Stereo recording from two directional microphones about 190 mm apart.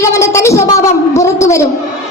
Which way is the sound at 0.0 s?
15° left (ahead or behind).